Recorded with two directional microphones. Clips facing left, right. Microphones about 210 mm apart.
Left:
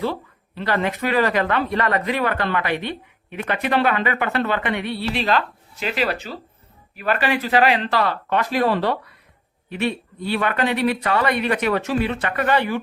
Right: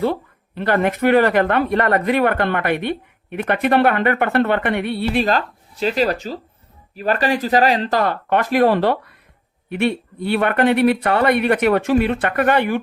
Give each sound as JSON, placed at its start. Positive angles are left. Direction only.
{"t": 0.0, "sound": "speech", "side_deg": -55}